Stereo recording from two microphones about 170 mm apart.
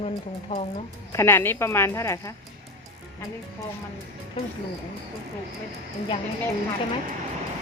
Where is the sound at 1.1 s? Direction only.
15° left (ahead or behind).